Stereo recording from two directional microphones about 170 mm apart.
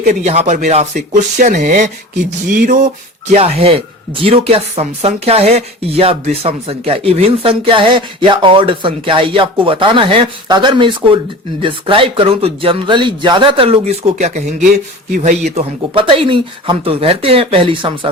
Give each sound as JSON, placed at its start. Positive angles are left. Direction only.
{"t": 0.0, "sound": "speech", "side_deg": -40}
{"t": 15.5, "sound": "speech", "side_deg": -30}